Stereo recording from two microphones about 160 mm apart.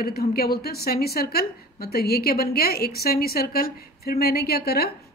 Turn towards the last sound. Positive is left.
turn(degrees=75)  # may be behind; listen again after turning